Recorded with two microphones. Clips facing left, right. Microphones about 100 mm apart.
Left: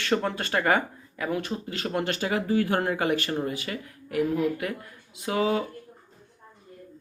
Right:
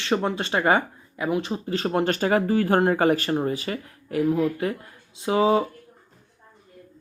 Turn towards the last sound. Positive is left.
turn(degrees=-25)  # may be behind; listen again after turning